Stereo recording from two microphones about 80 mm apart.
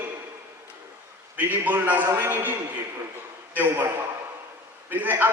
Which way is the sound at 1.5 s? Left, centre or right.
Right.